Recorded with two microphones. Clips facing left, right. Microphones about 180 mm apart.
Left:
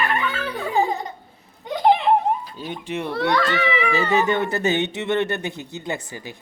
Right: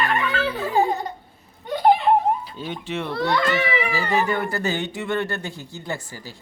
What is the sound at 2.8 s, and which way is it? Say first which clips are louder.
A child's voice: left 2 dB; 15° left (ahead or behind).